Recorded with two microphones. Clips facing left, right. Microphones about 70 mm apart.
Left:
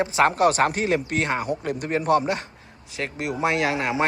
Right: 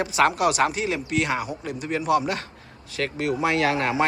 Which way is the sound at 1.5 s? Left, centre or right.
Left.